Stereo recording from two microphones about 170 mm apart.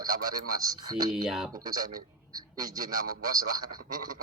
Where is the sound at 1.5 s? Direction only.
20° right (ahead or behind).